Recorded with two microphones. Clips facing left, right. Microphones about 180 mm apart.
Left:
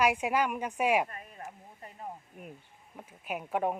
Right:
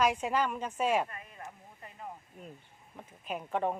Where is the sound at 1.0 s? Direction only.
40° left (ahead or behind).